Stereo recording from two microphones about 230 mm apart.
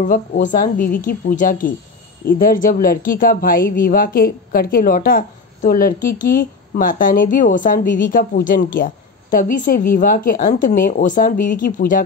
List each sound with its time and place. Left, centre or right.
0.0 s a woman's voice: left